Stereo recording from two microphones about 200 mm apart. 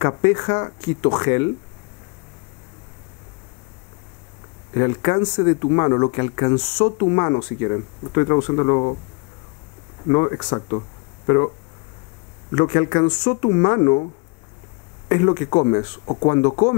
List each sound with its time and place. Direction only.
0.0 s speech: 20° left (ahead or behind)
4.7 s speech: 20° left (ahead or behind)
10.0 s speech: 20° left (ahead or behind)
13.1 s speech: 10° left (ahead or behind)
13.4 s speech: 25° left (ahead or behind)
15.0 s speech: 20° left (ahead or behind)